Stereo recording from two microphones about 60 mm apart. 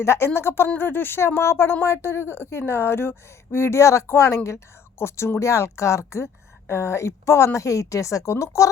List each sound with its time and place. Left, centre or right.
0.0 s a woman's voice: left